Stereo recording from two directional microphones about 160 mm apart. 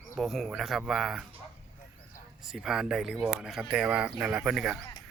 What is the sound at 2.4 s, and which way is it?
Speech, 5° right (ahead or behind).